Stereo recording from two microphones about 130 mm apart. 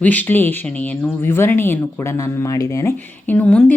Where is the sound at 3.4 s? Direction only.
10° left (ahead or behind).